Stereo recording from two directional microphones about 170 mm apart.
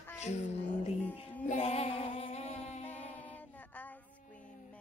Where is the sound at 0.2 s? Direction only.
40° left (ahead or behind).